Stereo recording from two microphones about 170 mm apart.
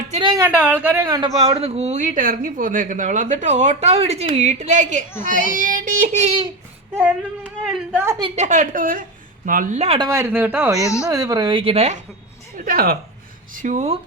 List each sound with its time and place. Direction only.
0.2 s speech: 25° right (ahead or behind)
0.4 s speech: 10° right (ahead or behind)
1.5 s speech: 35° right (ahead or behind)
7.4 s speech: centre (ahead or behind)
7.9 s speech: 15° right (ahead or behind)
8.4 s speech: 45° right (ahead or behind)
10.0 s speech: 15° right (ahead or behind)
10.8 s speech: 20° left (ahead or behind)
11.1 s speech: 20° right (ahead or behind); by 11.9 s 35° right (ahead or behind)
12.5 s speech: 60° right (ahead or behind)
13.5 s speech: 50° right (ahead or behind)